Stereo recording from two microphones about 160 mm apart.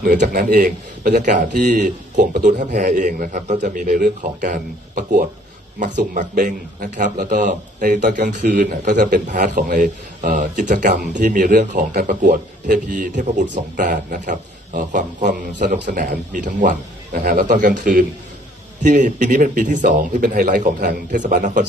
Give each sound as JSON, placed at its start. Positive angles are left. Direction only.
{"t": 0.0, "sound": "a man's voice", "side_deg": -60}
{"t": 17.1, "sound": "a man's voice", "side_deg": -65}